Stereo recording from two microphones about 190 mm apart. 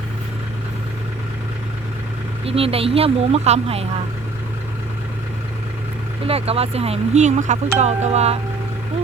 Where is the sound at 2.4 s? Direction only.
30° right (ahead or behind).